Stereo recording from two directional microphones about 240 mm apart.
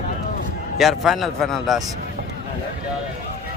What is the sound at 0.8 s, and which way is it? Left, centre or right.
Speech, centre.